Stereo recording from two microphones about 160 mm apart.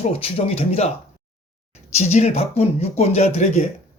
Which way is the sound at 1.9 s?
45° left (ahead or behind).